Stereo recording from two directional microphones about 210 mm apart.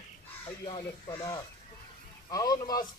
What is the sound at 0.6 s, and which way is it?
A man's voice, 25° left (ahead or behind).